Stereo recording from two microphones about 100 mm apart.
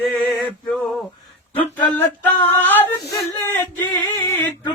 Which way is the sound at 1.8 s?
20° left (ahead or behind).